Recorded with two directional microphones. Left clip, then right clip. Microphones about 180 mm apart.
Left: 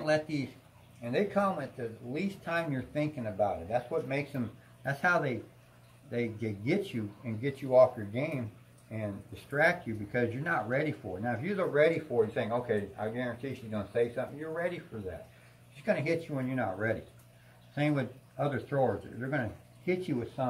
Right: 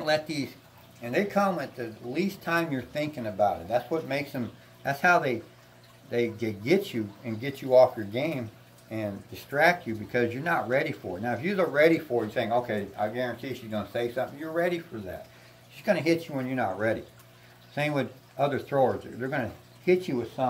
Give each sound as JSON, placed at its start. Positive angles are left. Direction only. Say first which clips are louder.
{"t": 0.0, "sound": "speech", "louder": "right 3 dB", "side_deg": -20}
{"t": 1.0, "sound": "speech", "louder": "right 4 dB", "side_deg": -30}
{"t": 4.8, "sound": "speech", "louder": "right 6 dB", "side_deg": -10}
{"t": 15.8, "sound": "speech", "louder": "right 5 dB", "side_deg": -25}